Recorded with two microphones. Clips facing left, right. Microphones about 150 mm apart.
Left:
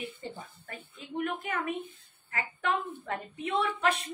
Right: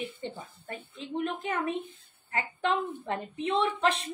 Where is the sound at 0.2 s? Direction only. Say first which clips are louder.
Right 3 dB; 30° right (ahead or behind).